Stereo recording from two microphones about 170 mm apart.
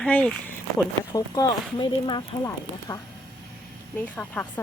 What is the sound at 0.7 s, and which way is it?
Speech, 20° left (ahead or behind).